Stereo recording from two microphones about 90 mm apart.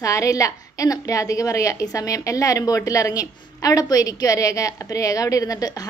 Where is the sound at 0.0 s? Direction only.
35° left (ahead or behind).